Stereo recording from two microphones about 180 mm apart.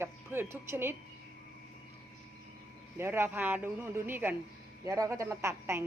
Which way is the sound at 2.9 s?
15° right (ahead or behind).